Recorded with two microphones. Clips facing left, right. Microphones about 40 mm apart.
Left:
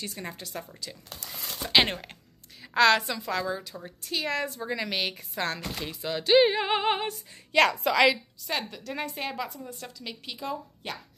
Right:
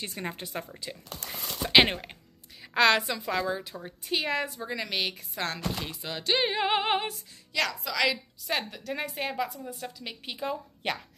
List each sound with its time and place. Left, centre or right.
0.0 s speech: right
1.2 s speech: right
1.6 s a woman's voice: centre
4.1 s chopping: centre
7.5 s a woman's voice: left
8.1 s chopping: centre
9.9 s a woman's voice: centre
10.8 s speech: right